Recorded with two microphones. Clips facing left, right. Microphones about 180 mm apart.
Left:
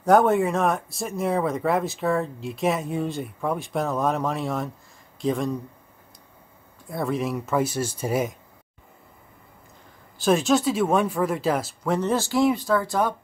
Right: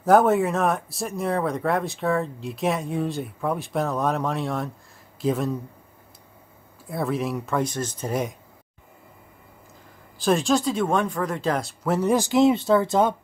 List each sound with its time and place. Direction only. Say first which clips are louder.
0.0 s speech: even; centre (ahead or behind)
6.9 s speech: even; centre (ahead or behind)
10.1 s speech: left 1 dB; centre (ahead or behind)
11.8 s speech: right 4 dB; 5° right (ahead or behind); by 13.1 s 20° right (ahead or behind)